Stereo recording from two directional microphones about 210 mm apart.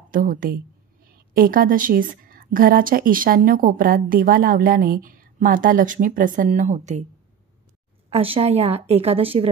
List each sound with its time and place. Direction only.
0.1 s a woman's voice: 40° right (ahead or behind)
8.1 s a woman's voice: 25° right (ahead or behind)